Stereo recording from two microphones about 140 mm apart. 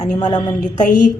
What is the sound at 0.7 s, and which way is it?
Speech, 65° left (ahead or behind).